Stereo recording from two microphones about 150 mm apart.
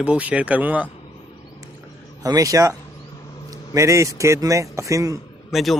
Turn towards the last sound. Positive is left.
turn(degrees=0)  # may be behind; listen again after turning